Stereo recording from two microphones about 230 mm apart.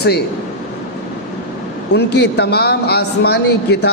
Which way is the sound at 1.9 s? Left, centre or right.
Left.